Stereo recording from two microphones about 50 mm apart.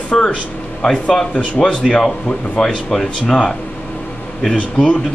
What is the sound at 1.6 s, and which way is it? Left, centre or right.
Speech, centre.